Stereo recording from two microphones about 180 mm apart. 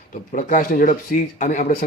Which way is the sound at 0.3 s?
50° left (ahead or behind).